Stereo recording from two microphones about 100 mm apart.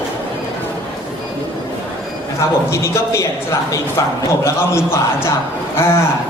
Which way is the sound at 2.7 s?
30° left (ahead or behind).